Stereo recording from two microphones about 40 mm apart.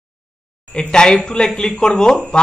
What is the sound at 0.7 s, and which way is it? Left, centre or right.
Speech, left.